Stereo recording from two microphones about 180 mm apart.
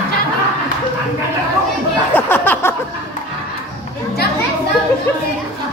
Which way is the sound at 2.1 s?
10° left (ahead or behind).